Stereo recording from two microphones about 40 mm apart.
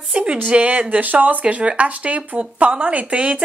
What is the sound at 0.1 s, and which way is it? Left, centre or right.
Speech, right.